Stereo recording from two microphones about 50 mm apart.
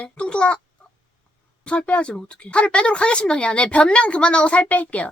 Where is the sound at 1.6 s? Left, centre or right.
Left.